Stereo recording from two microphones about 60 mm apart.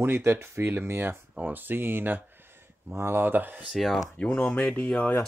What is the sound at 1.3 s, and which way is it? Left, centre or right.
Speech, right.